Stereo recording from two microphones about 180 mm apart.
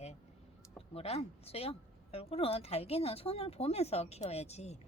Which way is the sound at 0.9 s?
35° left (ahead or behind).